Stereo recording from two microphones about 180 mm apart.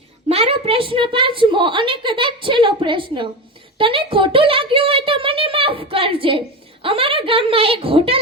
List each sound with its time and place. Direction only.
0.3 s a woman's voice: 35° right (ahead or behind)